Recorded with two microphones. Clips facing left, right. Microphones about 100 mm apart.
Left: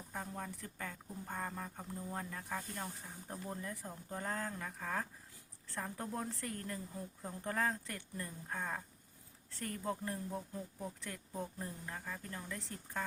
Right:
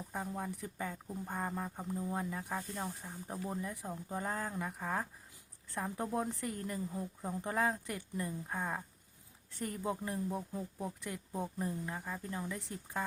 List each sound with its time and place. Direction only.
0.1 s speech: 15° right (ahead or behind)